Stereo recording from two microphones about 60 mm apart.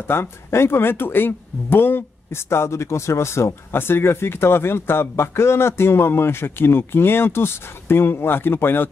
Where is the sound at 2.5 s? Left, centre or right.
Left.